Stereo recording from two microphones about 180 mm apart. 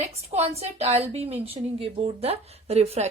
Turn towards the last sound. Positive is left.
turn(degrees=-35)  # may be behind; listen again after turning